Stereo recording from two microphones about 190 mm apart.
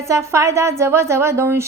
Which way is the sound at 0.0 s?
15° right (ahead or behind).